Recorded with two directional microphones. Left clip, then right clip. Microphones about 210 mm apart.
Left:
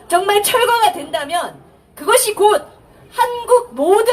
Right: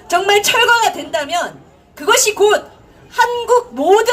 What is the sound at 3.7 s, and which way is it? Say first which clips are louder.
Speech: right 2 dB; 20° right (ahead or behind).